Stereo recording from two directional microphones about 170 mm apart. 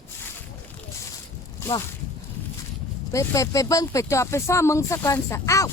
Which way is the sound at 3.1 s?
15° left (ahead or behind).